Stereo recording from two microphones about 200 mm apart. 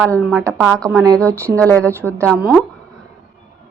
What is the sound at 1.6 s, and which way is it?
Speech, 10° left (ahead or behind).